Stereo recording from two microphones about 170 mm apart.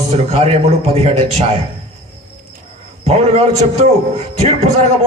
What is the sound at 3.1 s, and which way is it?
A man's voice, 40° right (ahead or behind).